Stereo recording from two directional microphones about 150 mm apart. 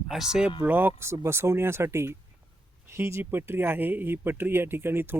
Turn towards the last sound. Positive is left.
turn(degrees=-15)  # may be behind; listen again after turning